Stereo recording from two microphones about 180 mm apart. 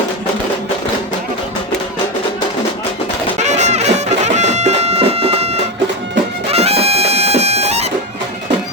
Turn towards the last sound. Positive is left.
turn(degrees=-35)  # may be behind; listen again after turning